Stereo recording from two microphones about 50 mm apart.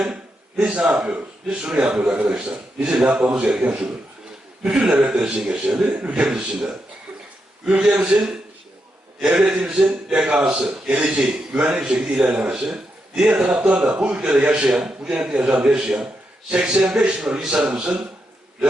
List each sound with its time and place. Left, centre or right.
0.6 s a man's voice: centre
1.7 s a man's voice: right
7.8 s a man's voice: right